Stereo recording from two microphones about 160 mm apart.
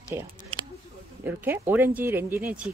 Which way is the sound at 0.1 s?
20° right (ahead or behind).